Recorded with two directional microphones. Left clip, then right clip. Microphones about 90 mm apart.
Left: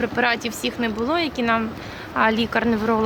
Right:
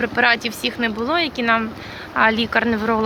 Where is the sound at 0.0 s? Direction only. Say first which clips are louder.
Right 4 dB; 25° left (ahead or behind).